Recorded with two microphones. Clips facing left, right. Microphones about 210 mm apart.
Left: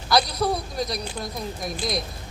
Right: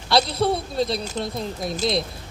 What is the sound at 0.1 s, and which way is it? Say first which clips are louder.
A man's voice: right 2 dB; 25° right (ahead or behind).